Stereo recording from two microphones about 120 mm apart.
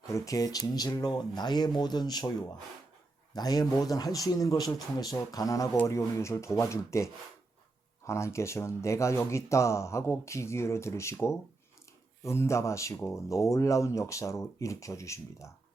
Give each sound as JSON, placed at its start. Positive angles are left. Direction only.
{"t": 0.1, "sound": "a man's voice", "side_deg": 30}
{"t": 3.3, "sound": "a man's voice", "side_deg": 30}